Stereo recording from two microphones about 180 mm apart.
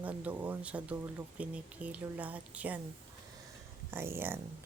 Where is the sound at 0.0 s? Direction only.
10° right (ahead or behind).